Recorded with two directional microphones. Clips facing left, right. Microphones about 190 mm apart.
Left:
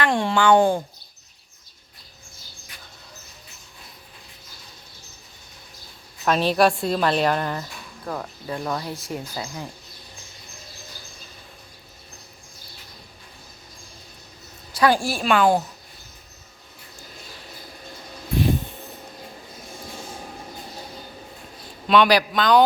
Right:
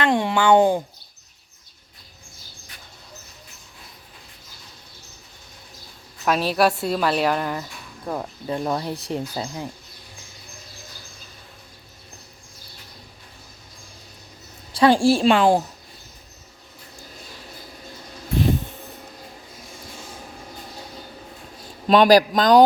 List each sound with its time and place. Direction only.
0.0 s speech: 20° right (ahead or behind)
6.2 s a woman's voice: 5° right (ahead or behind)
9.0 s speech: 30° right (ahead or behind)
14.7 s speech: 25° right (ahead or behind)
21.8 s a man's voice: 40° right (ahead or behind)